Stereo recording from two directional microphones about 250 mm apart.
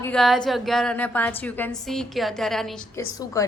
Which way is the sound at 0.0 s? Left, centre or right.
Centre.